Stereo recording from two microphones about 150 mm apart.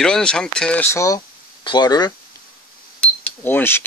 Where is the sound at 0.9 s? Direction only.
20° left (ahead or behind).